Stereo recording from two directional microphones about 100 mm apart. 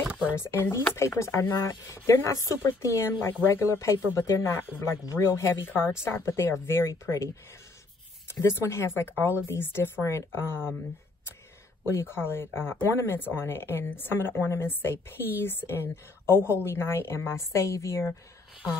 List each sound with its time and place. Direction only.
0.1 s a sound: 15° right (ahead or behind)
0.4 s speech: 25° left (ahead or behind)
8.3 s speech: 25° left (ahead or behind)
11.9 s a woman's voice: 25° left (ahead or behind)